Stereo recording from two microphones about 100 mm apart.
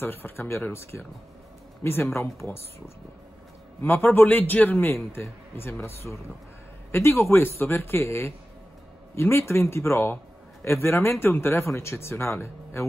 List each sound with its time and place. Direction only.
0.0 s a man's voice: 20° left (ahead or behind)
3.8 s a man's voice: 20° left (ahead or behind)